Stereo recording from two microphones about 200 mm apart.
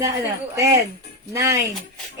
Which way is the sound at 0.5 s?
15° right (ahead or behind).